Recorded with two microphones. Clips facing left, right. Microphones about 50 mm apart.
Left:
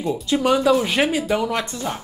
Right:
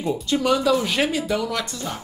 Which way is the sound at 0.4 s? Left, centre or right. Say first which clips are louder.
Left 3 dB; centre.